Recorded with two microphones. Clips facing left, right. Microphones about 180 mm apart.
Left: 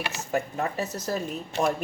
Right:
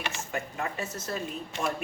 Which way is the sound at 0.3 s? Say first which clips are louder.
Left 9 dB; 35° left (ahead or behind).